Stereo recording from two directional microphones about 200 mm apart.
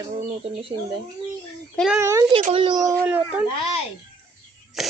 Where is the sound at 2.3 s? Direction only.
30° right (ahead or behind); by 3.4 s 5° right (ahead or behind).